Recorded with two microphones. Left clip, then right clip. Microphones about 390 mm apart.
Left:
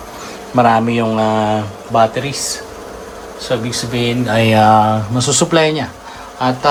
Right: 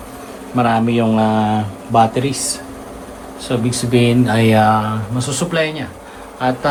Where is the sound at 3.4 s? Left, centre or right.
Centre.